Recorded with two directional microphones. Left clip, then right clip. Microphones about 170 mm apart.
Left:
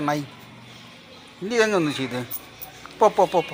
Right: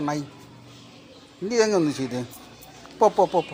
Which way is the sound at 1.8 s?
5° left (ahead or behind).